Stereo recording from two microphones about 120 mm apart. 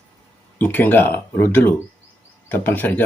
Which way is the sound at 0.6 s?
15° left (ahead or behind).